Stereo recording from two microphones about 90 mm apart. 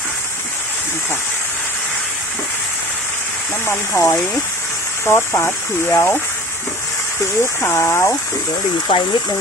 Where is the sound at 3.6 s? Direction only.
30° left (ahead or behind).